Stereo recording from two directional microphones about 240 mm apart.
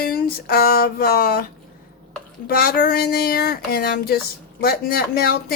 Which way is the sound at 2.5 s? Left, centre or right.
Left.